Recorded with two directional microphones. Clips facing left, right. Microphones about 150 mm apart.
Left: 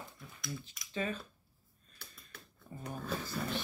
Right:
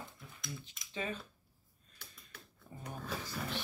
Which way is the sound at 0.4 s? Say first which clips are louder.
Left 4 dB; 25° right (ahead or behind).